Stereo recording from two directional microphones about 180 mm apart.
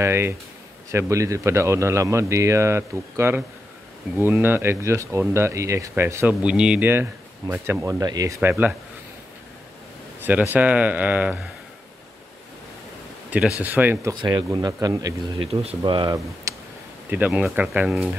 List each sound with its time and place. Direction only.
0.0 s speech: 15° right (ahead or behind)
8.4 s speech: 10° right (ahead or behind)
10.5 s speech: 10° right (ahead or behind)
13.6 s speech: 10° right (ahead or behind)
14.1 s speech: 25° right (ahead or behind)
15.4 s speech: 35° right (ahead or behind)
17.1 s speech: 10° right (ahead or behind)